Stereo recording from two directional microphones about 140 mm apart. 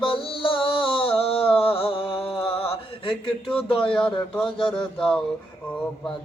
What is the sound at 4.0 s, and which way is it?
Speech, 5° left (ahead or behind).